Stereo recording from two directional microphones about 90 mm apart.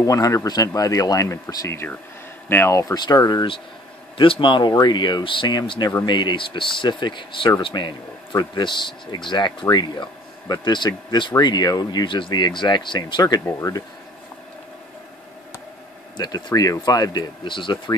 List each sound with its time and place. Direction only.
0.0 s speech: 40° left (ahead or behind)
2.5 s speech: 25° left (ahead or behind)
2.8 s speech: 45° left (ahead or behind)
4.2 s speech: 65° left (ahead or behind)
13.5 s speech: 30° left (ahead or behind)
16.2 s speech: 50° left (ahead or behind)